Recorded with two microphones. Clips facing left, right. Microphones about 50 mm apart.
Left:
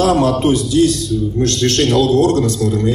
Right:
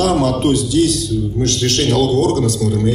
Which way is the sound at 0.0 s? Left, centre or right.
Left.